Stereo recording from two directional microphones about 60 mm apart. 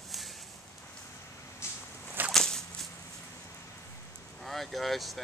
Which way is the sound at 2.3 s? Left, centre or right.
Centre.